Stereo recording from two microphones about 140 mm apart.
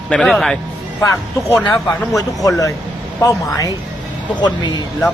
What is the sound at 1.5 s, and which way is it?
Speech, 15° left (ahead or behind).